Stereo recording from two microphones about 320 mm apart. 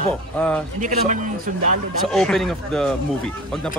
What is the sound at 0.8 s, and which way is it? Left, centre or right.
Speech, right.